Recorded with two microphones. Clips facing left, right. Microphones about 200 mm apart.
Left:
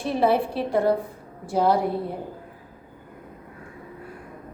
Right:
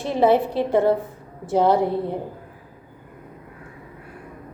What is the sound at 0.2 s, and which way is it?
A woman's voice, 20° right (ahead or behind).